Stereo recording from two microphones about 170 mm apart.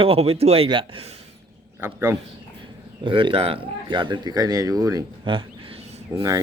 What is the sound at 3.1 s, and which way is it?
Speech, 30° right (ahead or behind).